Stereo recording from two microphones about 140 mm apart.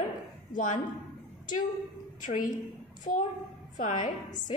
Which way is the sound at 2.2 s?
70° left (ahead or behind).